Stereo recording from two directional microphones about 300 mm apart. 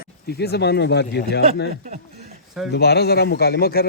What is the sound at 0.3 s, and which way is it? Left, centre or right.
Speech, left.